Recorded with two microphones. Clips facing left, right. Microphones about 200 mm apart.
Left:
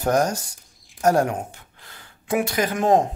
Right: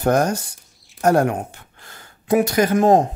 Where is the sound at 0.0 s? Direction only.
60° right (ahead or behind).